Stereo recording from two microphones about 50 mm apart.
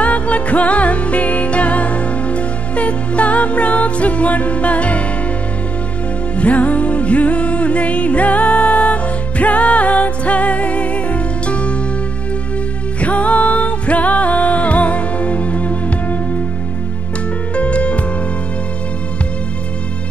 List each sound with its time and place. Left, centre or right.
0.0 s music: left
6.3 s music: left
13.0 s music: left
17.6 s music: left